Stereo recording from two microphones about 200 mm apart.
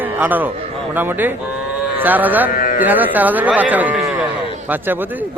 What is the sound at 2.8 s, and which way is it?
A man's voice, 10° right (ahead or behind).